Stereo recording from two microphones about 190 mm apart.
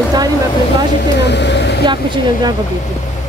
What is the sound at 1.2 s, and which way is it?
Vehicle, 65° left (ahead or behind).